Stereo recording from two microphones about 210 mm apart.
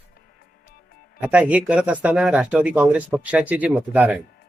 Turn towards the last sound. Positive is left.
turn(degrees=-5)  # may be behind; listen again after turning